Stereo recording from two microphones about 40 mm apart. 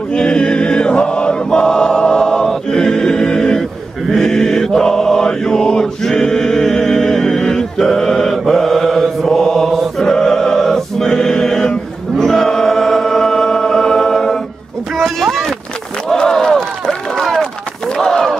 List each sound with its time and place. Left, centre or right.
0.1 s choir: left
2.7 s music: centre
4.1 s mantra: centre
12.2 s choir: centre
15.0 s a sound: centre
16.1 s run: centre
17.9 s a sound: centre